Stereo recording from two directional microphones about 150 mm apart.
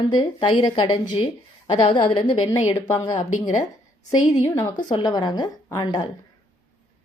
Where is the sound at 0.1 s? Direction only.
30° left (ahead or behind).